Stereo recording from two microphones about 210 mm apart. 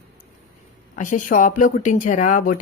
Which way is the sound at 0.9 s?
35° left (ahead or behind).